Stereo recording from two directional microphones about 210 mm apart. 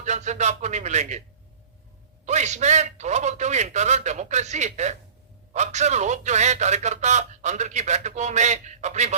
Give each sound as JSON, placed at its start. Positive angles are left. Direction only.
{"t": 0.0, "sound": "speech", "side_deg": -35}
{"t": 2.2, "sound": "speech", "side_deg": -35}